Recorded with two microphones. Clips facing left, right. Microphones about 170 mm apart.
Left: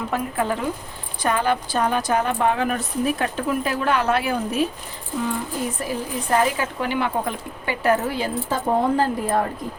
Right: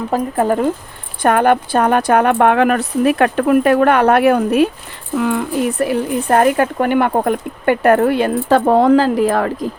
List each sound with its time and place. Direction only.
0.1 s speech: 45° right (ahead or behind)
1.2 s speech: 60° right (ahead or behind); by 9.5 s 90° right